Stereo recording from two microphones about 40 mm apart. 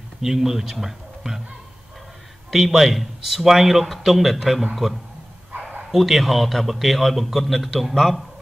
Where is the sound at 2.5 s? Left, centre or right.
Centre.